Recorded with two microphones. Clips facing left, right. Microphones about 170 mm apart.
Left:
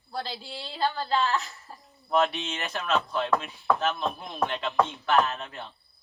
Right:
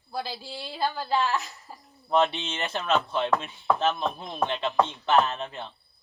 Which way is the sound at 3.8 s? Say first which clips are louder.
Right 2 dB; 20° right (ahead or behind).